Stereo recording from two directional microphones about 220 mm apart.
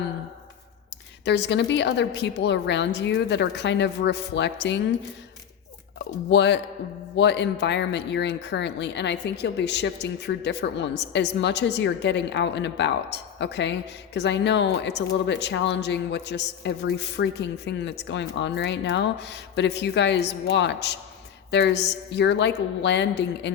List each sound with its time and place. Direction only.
1.2 s speech: 50° left (ahead or behind)
6.3 s speech: 50° left (ahead or behind)